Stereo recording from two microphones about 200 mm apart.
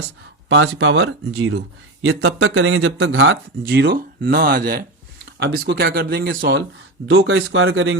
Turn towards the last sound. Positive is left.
turn(degrees=-70)  # may be behind; listen again after turning